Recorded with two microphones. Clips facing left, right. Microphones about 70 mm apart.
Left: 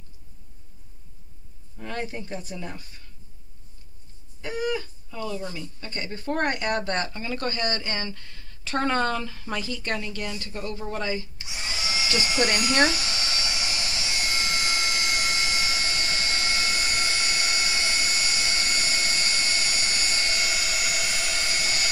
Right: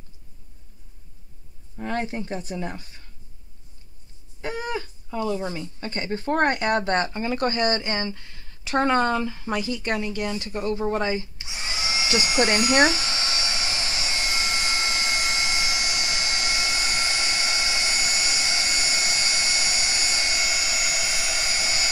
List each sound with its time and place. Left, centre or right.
1.8 s speech: right
4.4 s speech: right
11.4 s a sound: centre